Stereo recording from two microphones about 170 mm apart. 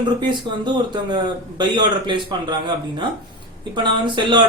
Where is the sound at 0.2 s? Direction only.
25° right (ahead or behind).